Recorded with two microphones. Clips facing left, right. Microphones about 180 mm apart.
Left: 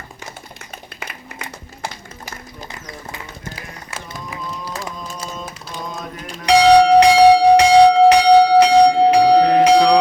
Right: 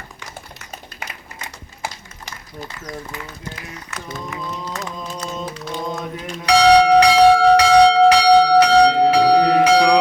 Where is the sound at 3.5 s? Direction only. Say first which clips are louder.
Even; 30° left (ahead or behind).